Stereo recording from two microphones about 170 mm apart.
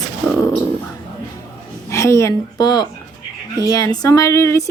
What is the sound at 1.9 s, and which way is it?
A woman's voice, 15° left (ahead or behind).